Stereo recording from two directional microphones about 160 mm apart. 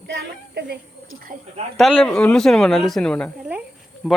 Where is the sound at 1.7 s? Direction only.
5° left (ahead or behind).